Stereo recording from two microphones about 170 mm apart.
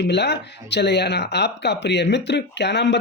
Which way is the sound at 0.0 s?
90° left.